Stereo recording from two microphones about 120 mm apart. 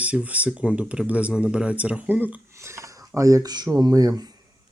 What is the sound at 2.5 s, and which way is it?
Speech, 25° right (ahead or behind).